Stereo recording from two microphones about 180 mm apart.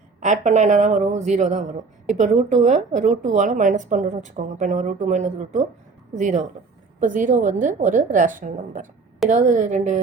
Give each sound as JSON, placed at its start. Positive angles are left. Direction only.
{"t": 0.2, "sound": "a woman's voice", "side_deg": -40}